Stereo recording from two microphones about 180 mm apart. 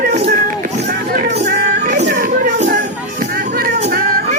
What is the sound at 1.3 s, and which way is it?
Music, 50° right (ahead or behind).